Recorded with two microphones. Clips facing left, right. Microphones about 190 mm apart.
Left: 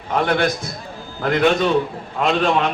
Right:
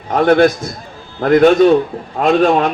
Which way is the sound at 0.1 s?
45° right (ahead or behind).